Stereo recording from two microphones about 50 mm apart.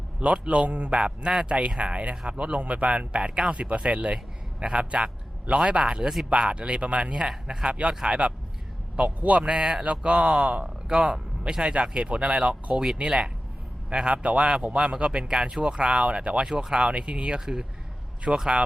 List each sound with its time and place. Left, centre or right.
0.2 s a man's voice: right